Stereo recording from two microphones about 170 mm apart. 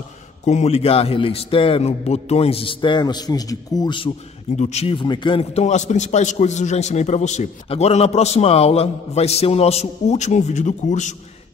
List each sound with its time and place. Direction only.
0.5 s a man's voice: 40° left (ahead or behind)
4.6 s a man's voice: 40° left (ahead or behind)